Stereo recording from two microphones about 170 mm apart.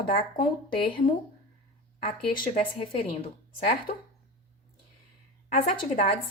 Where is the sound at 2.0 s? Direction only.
55° left (ahead or behind).